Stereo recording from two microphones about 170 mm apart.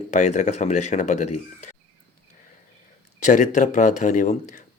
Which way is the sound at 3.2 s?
45° left (ahead or behind).